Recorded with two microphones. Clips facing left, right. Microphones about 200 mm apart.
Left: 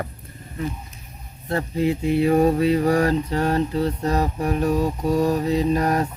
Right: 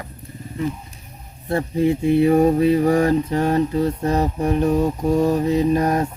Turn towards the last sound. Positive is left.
turn(degrees=-20)  # may be behind; listen again after turning